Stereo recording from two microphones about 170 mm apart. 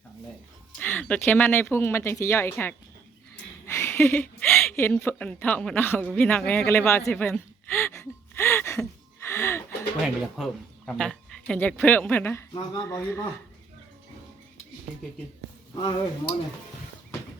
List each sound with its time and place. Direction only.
0.8 s a woman's voice: 10° left (ahead or behind)
9.2 s a sound: 15° left (ahead or behind)
10.3 s speech: centre (ahead or behind)
15.7 s speech: 30° left (ahead or behind)